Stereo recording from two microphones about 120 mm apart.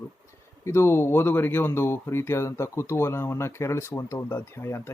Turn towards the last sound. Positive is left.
turn(degrees=25)  # may be behind; listen again after turning